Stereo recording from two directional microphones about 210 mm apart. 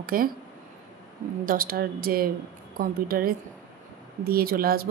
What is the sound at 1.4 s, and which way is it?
Speech, 45° right (ahead or behind).